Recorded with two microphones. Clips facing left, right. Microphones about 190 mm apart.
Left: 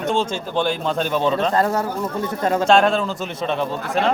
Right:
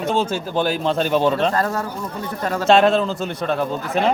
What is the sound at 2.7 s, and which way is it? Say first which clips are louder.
A man's voice: right 3 dB; centre (ahead or behind).